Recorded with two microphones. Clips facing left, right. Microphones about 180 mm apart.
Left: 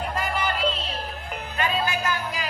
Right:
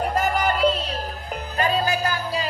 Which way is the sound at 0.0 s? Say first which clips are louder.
Right 5 dB; 40° right (ahead or behind).